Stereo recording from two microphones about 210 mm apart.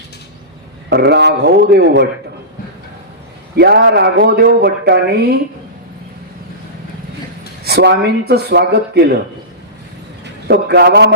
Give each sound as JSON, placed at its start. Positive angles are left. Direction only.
{"t": 0.9, "sound": "speech", "side_deg": -55}
{"t": 3.5, "sound": "speech", "side_deg": -50}
{"t": 7.6, "sound": "speech", "side_deg": -50}
{"t": 10.5, "sound": "speech", "side_deg": -50}